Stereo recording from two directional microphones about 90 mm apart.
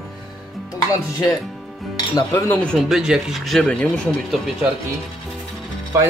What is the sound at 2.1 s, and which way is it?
Speech, 40° left (ahead or behind).